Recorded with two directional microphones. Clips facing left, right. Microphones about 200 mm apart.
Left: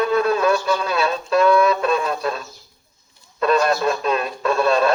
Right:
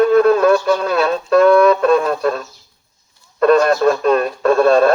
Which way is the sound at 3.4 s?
50° right (ahead or behind).